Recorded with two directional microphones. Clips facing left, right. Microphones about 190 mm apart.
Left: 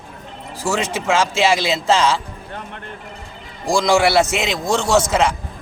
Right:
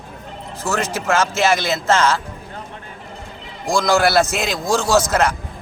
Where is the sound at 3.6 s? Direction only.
Centre (ahead or behind).